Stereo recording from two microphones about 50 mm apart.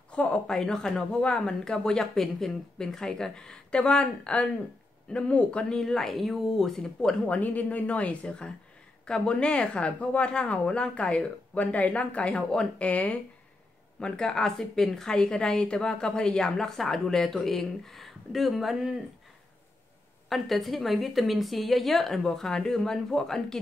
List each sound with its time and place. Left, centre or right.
0.1 s speech: left
0.5 s a woman's voice: centre
5.8 s a woman's voice: centre
7.0 s speech: centre
7.3 s speech: left
12.8 s speech: left
14.0 s a woman's voice: centre
20.2 s a woman's voice: centre